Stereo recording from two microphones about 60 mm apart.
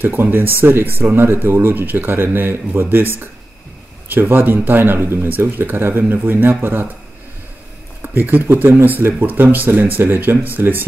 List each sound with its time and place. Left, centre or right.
0.0 s speech: right
8.0 s speech: right